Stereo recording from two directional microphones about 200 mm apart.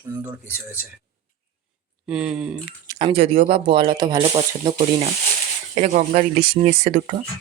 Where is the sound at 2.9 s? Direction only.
25° right (ahead or behind).